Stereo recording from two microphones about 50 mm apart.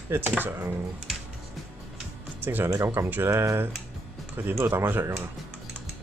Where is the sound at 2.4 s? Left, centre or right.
Right.